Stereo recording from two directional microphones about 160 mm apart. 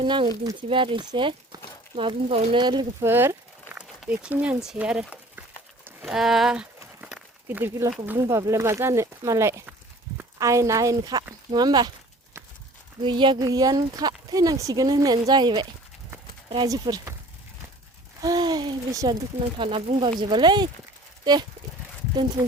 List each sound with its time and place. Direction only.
0.0 s speech: 30° right (ahead or behind)
3.0 s speech: 15° right (ahead or behind)
3.7 s a sound: 10° right (ahead or behind)
7.4 s speech: 15° right (ahead or behind)
13.0 s speech: 30° right (ahead or behind)
16.6 s speech: 25° right (ahead or behind)
18.2 s speech: 25° right (ahead or behind)